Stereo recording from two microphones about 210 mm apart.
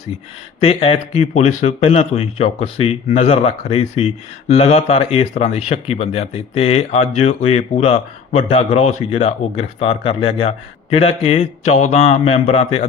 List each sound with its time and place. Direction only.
0.6 s speech: 30° left (ahead or behind)